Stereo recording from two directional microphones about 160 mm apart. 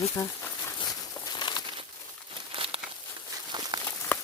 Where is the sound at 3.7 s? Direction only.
25° right (ahead or behind).